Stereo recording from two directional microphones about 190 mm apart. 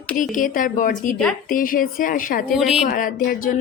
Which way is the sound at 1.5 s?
45° left (ahead or behind).